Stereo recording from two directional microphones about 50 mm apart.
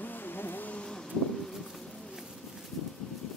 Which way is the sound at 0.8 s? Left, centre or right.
Centre.